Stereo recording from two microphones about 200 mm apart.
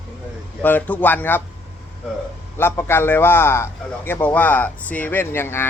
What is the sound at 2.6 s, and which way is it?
A man's voice, 10° left (ahead or behind).